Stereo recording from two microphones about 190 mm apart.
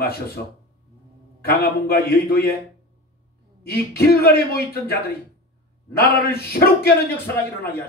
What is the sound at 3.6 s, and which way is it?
Speech, 55° left (ahead or behind).